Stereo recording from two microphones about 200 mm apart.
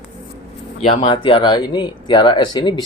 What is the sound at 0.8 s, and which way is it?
Speech, 35° left (ahead or behind).